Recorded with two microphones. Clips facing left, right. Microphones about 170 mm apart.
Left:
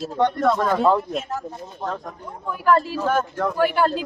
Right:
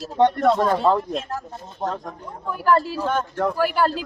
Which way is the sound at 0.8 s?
Centre (ahead or behind).